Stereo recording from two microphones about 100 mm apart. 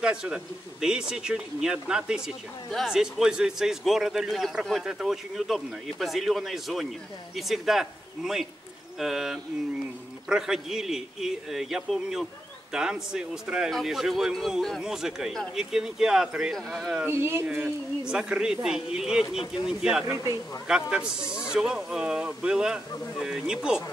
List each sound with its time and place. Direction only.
0.0 s speech: 10° right (ahead or behind)
17.0 s speech: 25° right (ahead or behind)
17.5 s speech: 5° right (ahead or behind)